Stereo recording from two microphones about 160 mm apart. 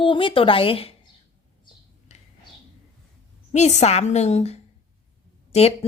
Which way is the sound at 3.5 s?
45° left (ahead or behind).